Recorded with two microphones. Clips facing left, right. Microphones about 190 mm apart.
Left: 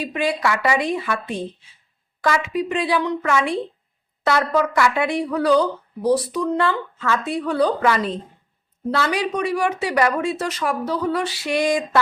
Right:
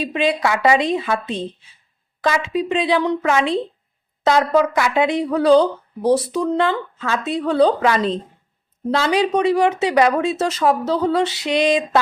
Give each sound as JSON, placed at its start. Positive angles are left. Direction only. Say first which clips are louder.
{"t": 0.0, "sound": "a woman's voice", "louder": "right 3 dB", "side_deg": -25}